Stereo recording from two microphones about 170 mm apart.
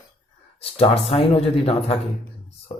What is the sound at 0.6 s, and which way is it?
Speech, 35° left (ahead or behind).